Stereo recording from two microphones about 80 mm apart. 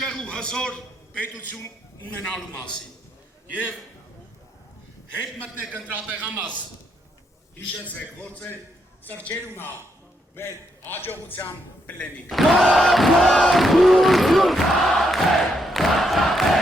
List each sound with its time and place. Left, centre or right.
0.0 s a sound: centre
6.0 s a man's voice: centre
7.5 s a man's voice: centre
12.3 s crowd: centre